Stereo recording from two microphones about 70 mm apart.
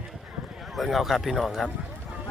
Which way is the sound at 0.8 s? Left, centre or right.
Centre.